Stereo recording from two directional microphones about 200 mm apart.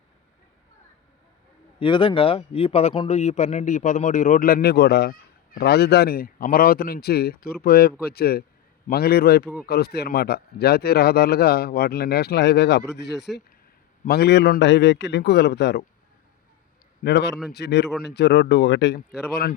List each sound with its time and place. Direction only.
1.8 s a man's voice: 25° left (ahead or behind); by 12.8 s 60° left (ahead or behind)
13.3 s speech: centre (ahead or behind)
14.0 s a man's voice: 55° left (ahead or behind)
17.0 s a man's voice: 55° left (ahead or behind)